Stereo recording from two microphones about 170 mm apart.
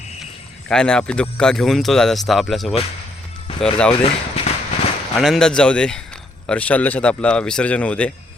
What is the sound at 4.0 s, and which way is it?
Speech, 35° left (ahead or behind).